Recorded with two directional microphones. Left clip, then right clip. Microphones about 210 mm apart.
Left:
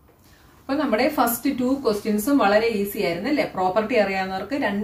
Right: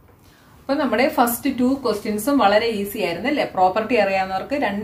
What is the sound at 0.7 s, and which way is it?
A woman's voice, 35° right (ahead or behind).